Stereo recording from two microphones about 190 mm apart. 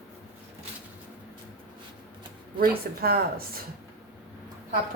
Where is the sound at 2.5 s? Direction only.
50° right (ahead or behind).